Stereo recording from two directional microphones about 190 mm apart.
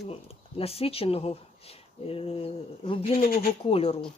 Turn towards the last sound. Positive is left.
turn(degrees=30)  # may be behind; listen again after turning